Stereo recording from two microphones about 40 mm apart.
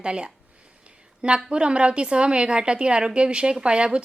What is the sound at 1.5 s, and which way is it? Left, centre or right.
A woman's voice, right.